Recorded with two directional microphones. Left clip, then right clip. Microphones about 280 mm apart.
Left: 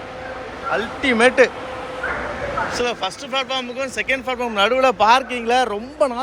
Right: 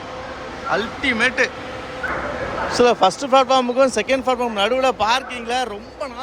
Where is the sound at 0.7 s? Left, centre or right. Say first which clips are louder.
Left 1 dB; centre.